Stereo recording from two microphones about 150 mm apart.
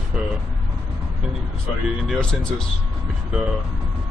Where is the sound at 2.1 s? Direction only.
5° left (ahead or behind).